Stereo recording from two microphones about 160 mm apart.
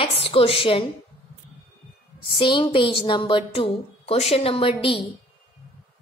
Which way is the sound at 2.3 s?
30° left (ahead or behind).